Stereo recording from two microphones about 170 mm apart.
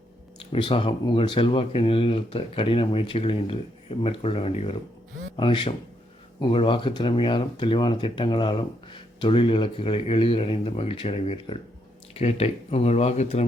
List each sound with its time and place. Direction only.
0.5 s speech: 35° left (ahead or behind)